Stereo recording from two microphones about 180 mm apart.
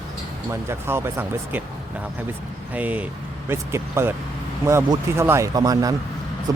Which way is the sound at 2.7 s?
10° right (ahead or behind).